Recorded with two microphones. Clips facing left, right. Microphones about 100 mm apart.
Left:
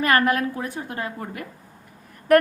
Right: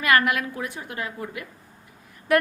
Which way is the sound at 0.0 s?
35° left (ahead or behind).